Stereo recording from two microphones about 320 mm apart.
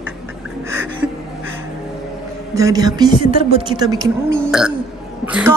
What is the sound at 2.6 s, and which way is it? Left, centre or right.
A woman's voice, centre.